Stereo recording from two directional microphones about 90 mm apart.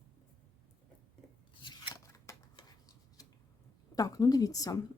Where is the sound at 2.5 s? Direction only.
45° left (ahead or behind).